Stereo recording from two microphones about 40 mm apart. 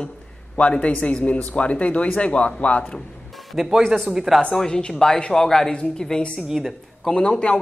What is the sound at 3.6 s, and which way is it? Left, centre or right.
Speech, centre.